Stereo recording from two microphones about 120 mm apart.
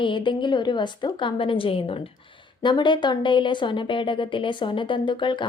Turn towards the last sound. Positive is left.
turn(degrees=40)  # may be behind; listen again after turning